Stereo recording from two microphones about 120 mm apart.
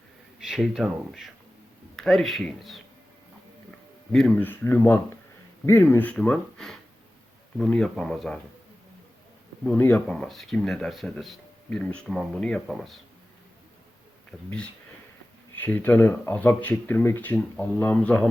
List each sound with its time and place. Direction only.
0.4 s speech: 5° right (ahead or behind)
4.1 s speech: 5° left (ahead or behind)
4.4 s speech: 15° left (ahead or behind)
6.1 s speech: 5° left (ahead or behind)
9.6 s speech: 10° left (ahead or behind)
14.3 s speech: 10° left (ahead or behind)